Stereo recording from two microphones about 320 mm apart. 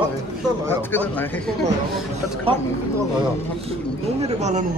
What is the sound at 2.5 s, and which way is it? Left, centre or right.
Speech, centre.